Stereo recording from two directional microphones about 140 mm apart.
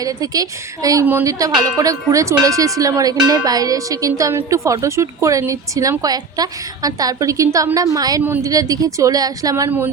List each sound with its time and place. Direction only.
0.0 s speech: 25° right (ahead or behind)